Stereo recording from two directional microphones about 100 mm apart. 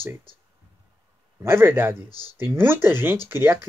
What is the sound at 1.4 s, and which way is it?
Speech, 25° right (ahead or behind).